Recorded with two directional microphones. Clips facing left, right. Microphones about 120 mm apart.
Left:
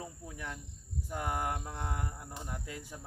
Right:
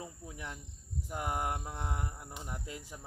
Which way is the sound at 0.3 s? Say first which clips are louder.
Left 1 dB; 20° right (ahead or behind).